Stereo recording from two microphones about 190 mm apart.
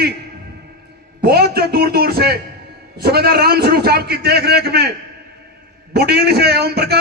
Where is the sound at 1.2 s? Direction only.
55° right (ahead or behind).